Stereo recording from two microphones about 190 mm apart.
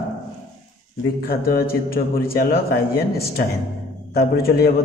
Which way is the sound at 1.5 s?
50° left (ahead or behind).